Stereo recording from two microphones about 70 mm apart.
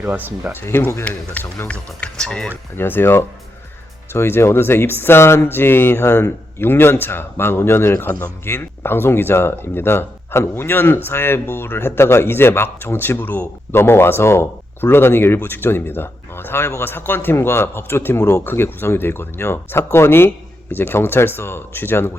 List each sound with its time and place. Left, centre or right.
0.0 s speech: right
0.5 s speech: left
1.0 s speech: left
2.7 s speech: left